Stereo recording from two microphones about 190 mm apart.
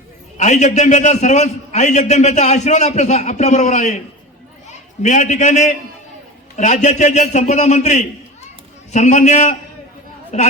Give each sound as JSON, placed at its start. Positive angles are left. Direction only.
{"t": 0.3, "sound": "a man's voice", "side_deg": 40}
{"t": 5.0, "sound": "a man's voice", "side_deg": 35}